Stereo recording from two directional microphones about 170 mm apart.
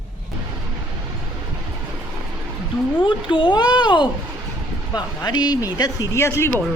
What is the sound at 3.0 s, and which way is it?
Speech, 30° left (ahead or behind).